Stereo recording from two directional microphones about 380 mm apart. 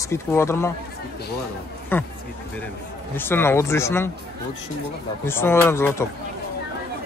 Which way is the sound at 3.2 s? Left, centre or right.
Centre.